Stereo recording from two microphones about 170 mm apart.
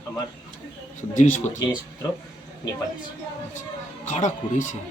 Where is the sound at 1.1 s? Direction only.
45° left (ahead or behind).